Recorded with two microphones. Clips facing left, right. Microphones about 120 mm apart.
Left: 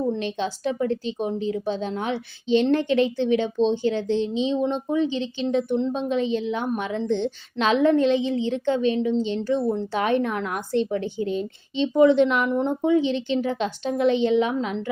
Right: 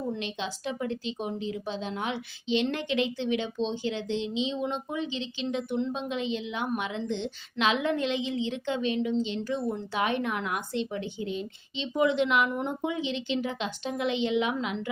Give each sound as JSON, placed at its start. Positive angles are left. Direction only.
{"t": 0.2, "sound": "a woman's voice", "side_deg": 40}
{"t": 12.5, "sound": "a woman's voice", "side_deg": 30}